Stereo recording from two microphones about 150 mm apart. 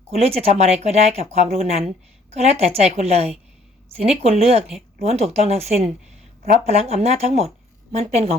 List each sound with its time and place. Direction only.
0.2 s speech: 40° right (ahead or behind)